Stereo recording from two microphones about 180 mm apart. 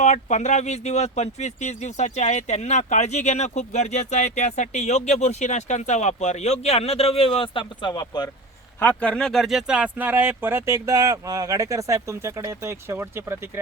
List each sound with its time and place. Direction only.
0.0 s speech: 40° left (ahead or behind); by 8.3 s 25° left (ahead or behind)
8.8 s speech: 10° left (ahead or behind); by 13.4 s 15° right (ahead or behind)